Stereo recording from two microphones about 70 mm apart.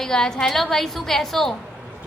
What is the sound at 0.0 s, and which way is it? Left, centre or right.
A woman's voice, centre.